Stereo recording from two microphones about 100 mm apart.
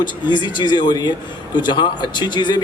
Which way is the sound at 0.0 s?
50° left (ahead or behind).